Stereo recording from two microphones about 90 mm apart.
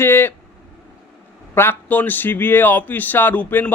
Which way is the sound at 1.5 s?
25° left (ahead or behind).